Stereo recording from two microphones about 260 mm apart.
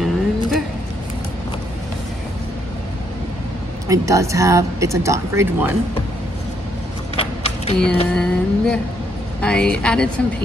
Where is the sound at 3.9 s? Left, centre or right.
Centre.